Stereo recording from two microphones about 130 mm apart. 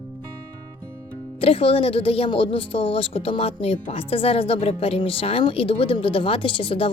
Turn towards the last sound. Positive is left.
turn(degrees=40)  # may be behind; listen again after turning